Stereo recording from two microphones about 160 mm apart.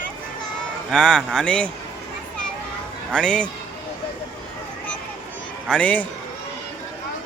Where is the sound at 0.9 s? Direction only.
5° left (ahead or behind).